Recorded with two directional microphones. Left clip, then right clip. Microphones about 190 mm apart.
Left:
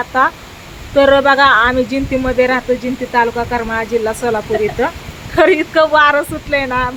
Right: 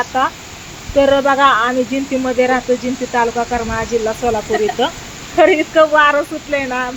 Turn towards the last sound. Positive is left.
turn(degrees=10)  # may be behind; listen again after turning